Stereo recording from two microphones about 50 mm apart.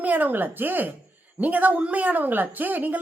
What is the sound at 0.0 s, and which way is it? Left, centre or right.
A man's voice, right.